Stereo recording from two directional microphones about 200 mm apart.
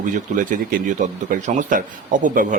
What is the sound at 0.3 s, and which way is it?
A man's voice, 40° right (ahead or behind).